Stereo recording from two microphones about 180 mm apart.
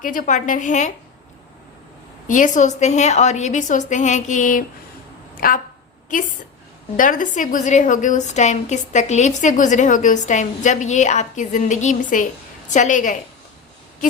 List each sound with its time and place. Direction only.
0.0 s a woman's voice: 50° left (ahead or behind)
2.2 s a woman's voice: 45° left (ahead or behind)
5.3 s a sound: 50° left (ahead or behind)
6.9 s a woman's voice: 45° left (ahead or behind)